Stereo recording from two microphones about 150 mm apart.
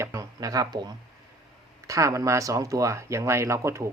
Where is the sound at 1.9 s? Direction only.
20° right (ahead or behind).